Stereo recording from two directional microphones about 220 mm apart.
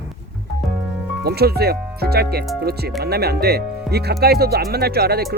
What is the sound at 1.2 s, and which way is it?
Speech, 45° right (ahead or behind).